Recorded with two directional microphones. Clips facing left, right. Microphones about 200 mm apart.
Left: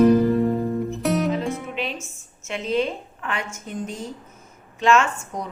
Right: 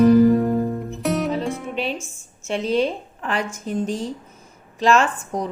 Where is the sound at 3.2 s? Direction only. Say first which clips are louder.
Right 4 dB; 35° right (ahead or behind).